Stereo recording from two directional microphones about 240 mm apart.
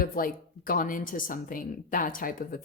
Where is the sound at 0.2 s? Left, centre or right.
Left.